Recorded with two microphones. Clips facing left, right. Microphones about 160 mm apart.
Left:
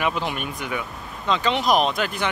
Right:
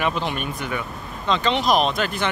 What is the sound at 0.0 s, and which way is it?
Speech, 5° left (ahead or behind).